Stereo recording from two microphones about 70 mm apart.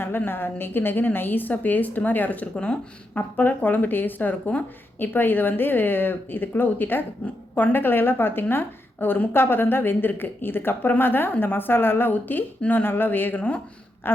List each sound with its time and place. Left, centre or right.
0.3 s a woman's voice: left